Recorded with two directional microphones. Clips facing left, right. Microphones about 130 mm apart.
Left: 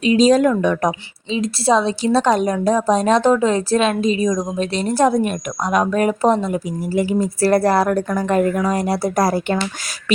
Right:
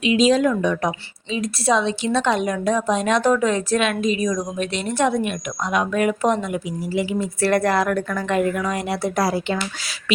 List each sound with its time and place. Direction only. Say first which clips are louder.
0.0 s speech: left 3 dB; 40° left (ahead or behind)
0.9 s a woman's voice: left 4 dB; 30° left (ahead or behind); by 9.6 s 45° left (ahead or behind)